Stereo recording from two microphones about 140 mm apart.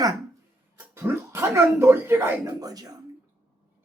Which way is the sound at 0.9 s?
15° right (ahead or behind).